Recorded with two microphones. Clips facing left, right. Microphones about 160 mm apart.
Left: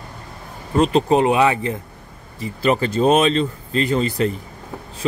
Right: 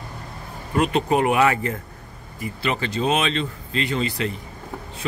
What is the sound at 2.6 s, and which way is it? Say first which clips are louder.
Speech: left 7 dB; 40° left (ahead or behind).